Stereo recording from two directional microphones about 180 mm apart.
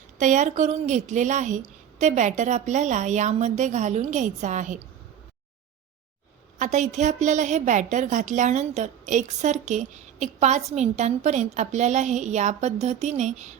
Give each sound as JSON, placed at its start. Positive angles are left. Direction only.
{"t": 0.2, "sound": "a woman's voice", "side_deg": -40}
{"t": 6.6, "sound": "a woman's voice", "side_deg": -40}